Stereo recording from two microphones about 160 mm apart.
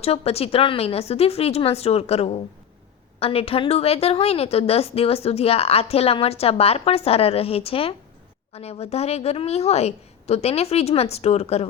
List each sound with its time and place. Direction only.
0.0 s a woman's voice: 40° left (ahead or behind)